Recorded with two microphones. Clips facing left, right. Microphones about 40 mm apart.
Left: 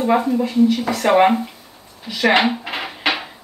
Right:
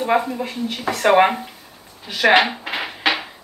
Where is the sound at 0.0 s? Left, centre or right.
Centre.